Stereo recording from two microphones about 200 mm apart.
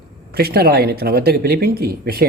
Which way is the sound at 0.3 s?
50° right (ahead or behind).